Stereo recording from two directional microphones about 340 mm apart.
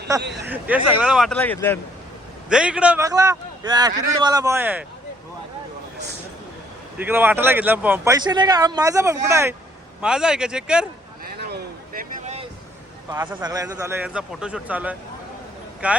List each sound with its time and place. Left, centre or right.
0.3 s a man's voice: centre
7.0 s a man's voice: centre
11.3 s a sound: right
13.1 s a man's voice: centre